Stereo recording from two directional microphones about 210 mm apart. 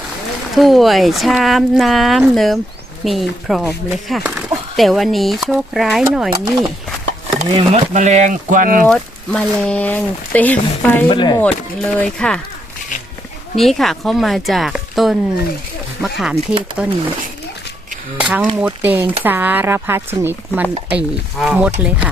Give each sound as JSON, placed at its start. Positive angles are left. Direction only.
{"t": 0.5, "sound": "speech", "side_deg": 0}
{"t": 7.3, "sound": "speech", "side_deg": -30}
{"t": 8.9, "sound": "speech", "side_deg": 5}
{"t": 11.1, "sound": "speech", "side_deg": 20}
{"t": 11.3, "sound": "speech", "side_deg": 5}
{"t": 13.6, "sound": "speech", "side_deg": 0}
{"t": 18.2, "sound": "chopping", "side_deg": -5}